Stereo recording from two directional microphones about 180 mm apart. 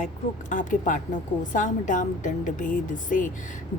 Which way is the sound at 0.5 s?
45° left (ahead or behind).